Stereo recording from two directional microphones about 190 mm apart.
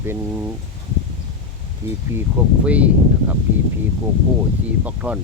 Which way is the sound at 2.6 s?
5° right (ahead or behind).